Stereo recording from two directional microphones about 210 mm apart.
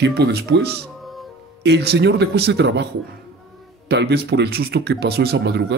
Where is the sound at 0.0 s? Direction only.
50° right (ahead or behind).